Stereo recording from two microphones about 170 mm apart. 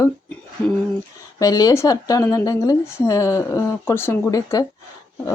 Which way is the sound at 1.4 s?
20° left (ahead or behind).